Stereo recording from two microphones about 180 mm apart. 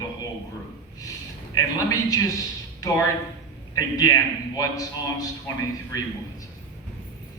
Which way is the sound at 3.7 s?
20° left (ahead or behind).